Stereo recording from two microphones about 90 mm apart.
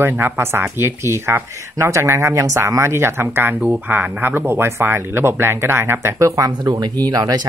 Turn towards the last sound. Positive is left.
turn(degrees=-45)  # may be behind; listen again after turning